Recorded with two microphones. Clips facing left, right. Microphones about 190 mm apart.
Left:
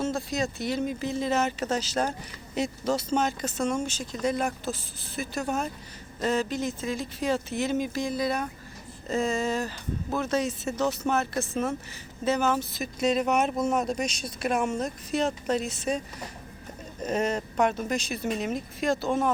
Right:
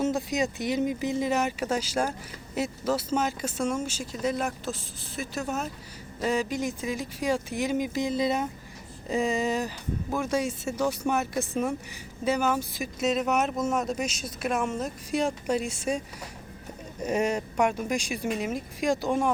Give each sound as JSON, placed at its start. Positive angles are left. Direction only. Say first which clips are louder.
{"t": 0.0, "sound": "speech", "louder": "right 2 dB", "side_deg": -15}